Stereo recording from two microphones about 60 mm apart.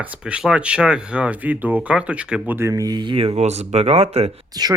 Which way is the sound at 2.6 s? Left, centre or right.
Right.